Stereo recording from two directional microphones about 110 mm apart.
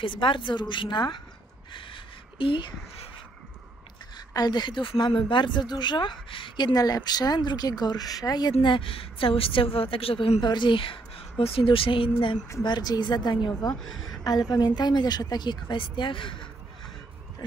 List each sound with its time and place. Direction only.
0.0 s a woman's voice: 50° left (ahead or behind)
2.3 s a woman's voice: 50° left (ahead or behind)
4.3 s a woman's voice: 40° left (ahead or behind); by 10.4 s 60° left (ahead or behind)
10.4 s speech: 45° left (ahead or behind)
12.6 s speech: 40° left (ahead or behind)
13.7 s a woman's voice: 5° left (ahead or behind)
14.5 s speech: 40° left (ahead or behind)